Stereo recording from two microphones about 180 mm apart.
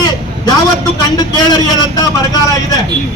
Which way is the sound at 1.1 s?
20° left (ahead or behind).